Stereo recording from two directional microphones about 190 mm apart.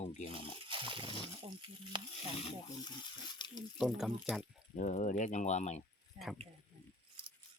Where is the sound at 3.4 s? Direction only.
25° left (ahead or behind).